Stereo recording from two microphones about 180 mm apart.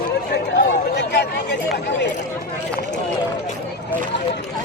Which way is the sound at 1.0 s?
65° left (ahead or behind).